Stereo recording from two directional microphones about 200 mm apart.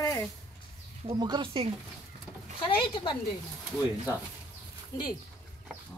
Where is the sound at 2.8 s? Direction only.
25° left (ahead or behind).